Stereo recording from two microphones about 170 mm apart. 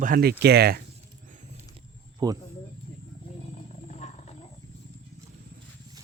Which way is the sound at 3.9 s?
40° left (ahead or behind).